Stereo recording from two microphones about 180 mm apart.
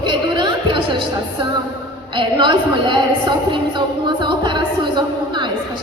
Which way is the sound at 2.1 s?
25° right (ahead or behind).